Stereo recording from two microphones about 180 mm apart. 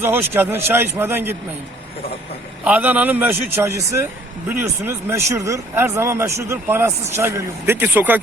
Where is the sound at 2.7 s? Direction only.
10° right (ahead or behind).